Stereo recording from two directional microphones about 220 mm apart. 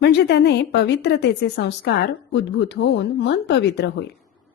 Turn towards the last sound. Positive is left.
turn(degrees=50)  # may be behind; listen again after turning